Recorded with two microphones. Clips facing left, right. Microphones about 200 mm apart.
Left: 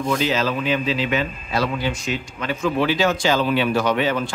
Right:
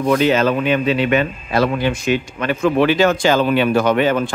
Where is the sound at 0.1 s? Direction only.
55° right (ahead or behind).